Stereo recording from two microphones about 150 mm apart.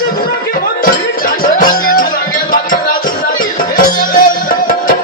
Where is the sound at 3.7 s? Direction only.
65° left (ahead or behind).